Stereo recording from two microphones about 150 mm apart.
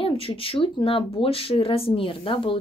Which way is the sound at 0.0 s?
35° left (ahead or behind).